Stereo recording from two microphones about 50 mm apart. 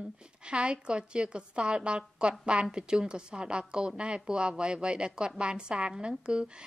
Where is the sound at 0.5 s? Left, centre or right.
Centre.